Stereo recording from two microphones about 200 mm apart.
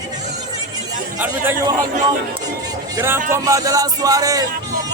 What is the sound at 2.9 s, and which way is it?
Speech, 10° right (ahead or behind).